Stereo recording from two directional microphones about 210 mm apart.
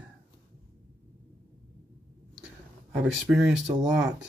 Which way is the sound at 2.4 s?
5° right (ahead or behind).